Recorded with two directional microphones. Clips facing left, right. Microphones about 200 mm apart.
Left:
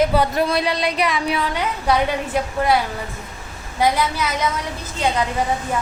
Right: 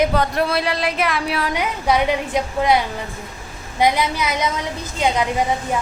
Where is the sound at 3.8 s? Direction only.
15° right (ahead or behind).